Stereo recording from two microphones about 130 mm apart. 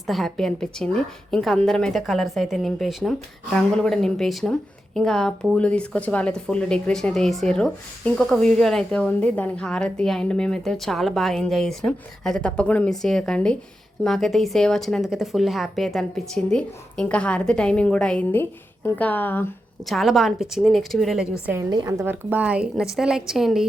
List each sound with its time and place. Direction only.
0.1 s speech: centre (ahead or behind)
19.9 s speech: centre (ahead or behind)
21.8 s speech: 25° right (ahead or behind)
22.1 s speech: 10° right (ahead or behind)